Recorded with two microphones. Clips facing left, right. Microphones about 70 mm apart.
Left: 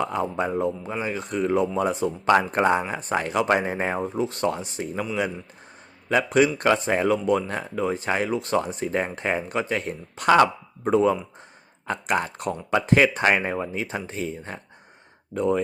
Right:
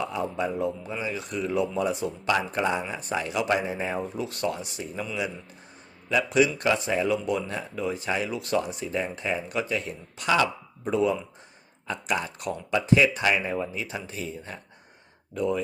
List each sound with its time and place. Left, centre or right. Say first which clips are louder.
0.0 s speech: left 3 dB; left
3.9 s speech: left 5 dB; left
6.1 s speech: left 3 dB; left